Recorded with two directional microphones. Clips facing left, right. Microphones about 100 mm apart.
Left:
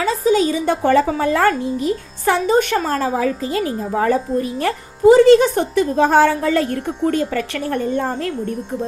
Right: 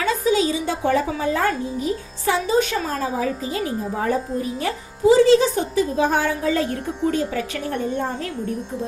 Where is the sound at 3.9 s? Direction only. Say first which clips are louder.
Left 7 dB; 80° left.